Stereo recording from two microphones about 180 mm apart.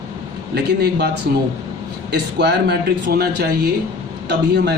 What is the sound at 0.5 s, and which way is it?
Speech, 65° right (ahead or behind).